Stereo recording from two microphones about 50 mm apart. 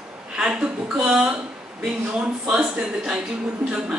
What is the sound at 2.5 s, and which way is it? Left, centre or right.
Speech, centre.